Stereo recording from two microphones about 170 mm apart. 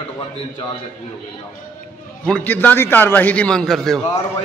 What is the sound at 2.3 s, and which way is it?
A man's voice, 10° left (ahead or behind).